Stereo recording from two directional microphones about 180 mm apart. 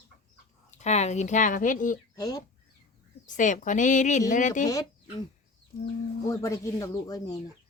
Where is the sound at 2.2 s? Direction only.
20° left (ahead or behind).